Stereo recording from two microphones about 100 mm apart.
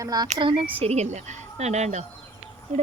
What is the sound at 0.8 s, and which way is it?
Speech, 90° right.